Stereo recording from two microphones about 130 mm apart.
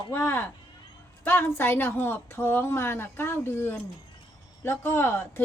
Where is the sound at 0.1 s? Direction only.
15° left (ahead or behind).